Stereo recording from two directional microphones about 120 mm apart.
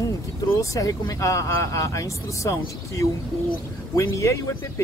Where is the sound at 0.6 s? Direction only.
30° left (ahead or behind).